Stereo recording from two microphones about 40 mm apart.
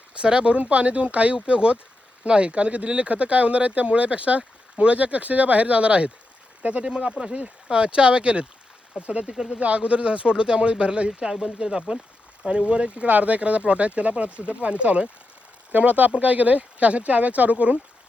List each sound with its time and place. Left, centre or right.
0.1 s speech: right
6.8 s speech: right
15.7 s speech: right